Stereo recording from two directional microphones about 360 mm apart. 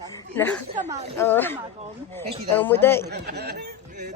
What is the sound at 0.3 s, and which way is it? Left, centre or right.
Speech, centre.